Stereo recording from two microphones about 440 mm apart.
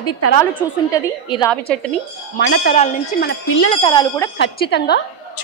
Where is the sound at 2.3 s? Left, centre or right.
Left; by 4.3 s centre.